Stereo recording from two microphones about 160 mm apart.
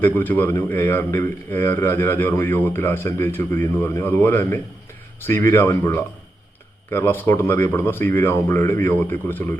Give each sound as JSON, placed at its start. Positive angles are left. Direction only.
{"t": 0.0, "sound": "speech", "side_deg": 10}